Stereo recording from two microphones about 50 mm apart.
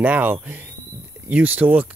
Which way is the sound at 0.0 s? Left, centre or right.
Right.